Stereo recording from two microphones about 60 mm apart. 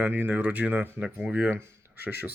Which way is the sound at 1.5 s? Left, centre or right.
Right.